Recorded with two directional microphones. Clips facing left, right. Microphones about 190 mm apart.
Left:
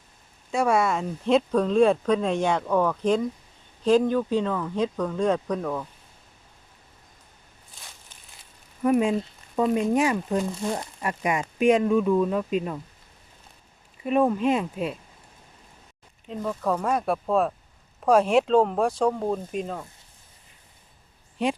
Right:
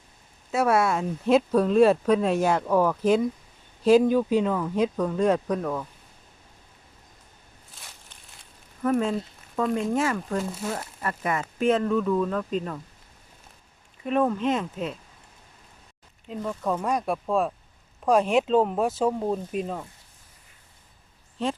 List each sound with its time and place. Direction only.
0.5 s speech: 5° right (ahead or behind)
7.8 s a sound: centre (ahead or behind)
8.8 s speech: 15° left (ahead or behind)
10.4 s speech: 5° right (ahead or behind)
11.0 s speech: 15° left (ahead or behind)
14.0 s speech: 10° left (ahead or behind)
16.3 s speech: centre (ahead or behind)
21.4 s speech: 15° left (ahead or behind)